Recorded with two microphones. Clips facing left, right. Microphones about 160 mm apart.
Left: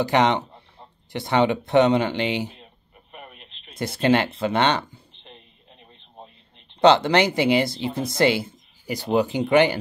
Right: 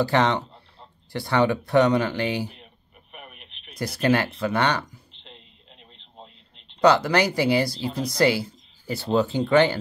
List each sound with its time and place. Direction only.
0.0 s speech: 20° left (ahead or behind)
3.4 s a sound: 60° right (ahead or behind)
3.7 s speech: 25° left (ahead or behind)
6.8 s speech: 25° left (ahead or behind)